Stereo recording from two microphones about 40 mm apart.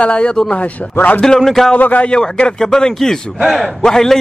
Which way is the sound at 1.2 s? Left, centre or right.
Centre.